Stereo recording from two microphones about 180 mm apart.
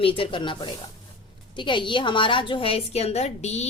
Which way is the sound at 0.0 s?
30° left (ahead or behind).